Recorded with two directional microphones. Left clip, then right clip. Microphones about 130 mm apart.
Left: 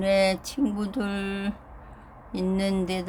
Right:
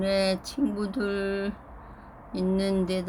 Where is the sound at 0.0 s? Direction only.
45° left (ahead or behind).